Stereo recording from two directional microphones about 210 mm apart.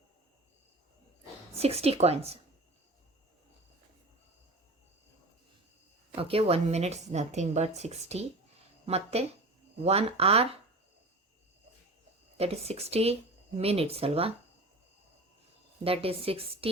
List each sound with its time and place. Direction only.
1.5 s a woman's voice: 30° right (ahead or behind)
6.1 s a woman's voice: 25° right (ahead or behind)
12.4 s a woman's voice: 30° right (ahead or behind)
15.8 s a woman's voice: 25° right (ahead or behind)